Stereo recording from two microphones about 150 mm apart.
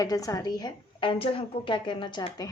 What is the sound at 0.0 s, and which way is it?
A woman's voice, 25° left (ahead or behind).